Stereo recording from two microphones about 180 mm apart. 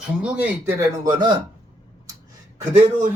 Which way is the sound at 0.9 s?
20° right (ahead or behind).